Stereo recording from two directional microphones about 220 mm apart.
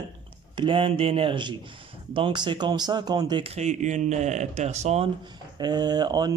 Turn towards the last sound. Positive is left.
turn(degrees=-20)  # may be behind; listen again after turning